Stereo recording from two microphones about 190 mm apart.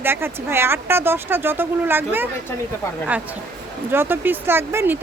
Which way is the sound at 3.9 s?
10° right (ahead or behind).